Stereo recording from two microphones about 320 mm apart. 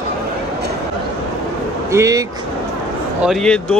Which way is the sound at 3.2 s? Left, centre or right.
Centre.